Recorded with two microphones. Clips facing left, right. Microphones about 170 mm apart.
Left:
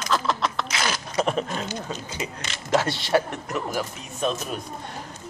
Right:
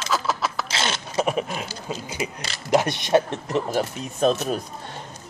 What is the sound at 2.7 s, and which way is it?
Speech, 20° right (ahead or behind).